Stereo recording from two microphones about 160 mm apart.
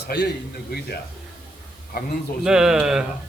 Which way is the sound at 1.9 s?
70° left (ahead or behind).